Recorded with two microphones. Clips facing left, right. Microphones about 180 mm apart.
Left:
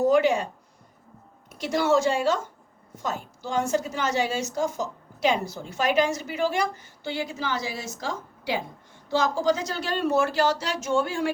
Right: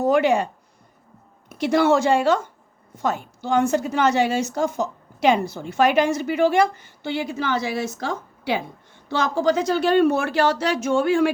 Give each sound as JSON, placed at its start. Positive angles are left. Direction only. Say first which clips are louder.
{"t": 0.0, "sound": "a woman's voice", "louder": "right 2 dB", "side_deg": -60}
{"t": 1.5, "sound": "a woman's voice", "louder": "right 5 dB", "side_deg": -60}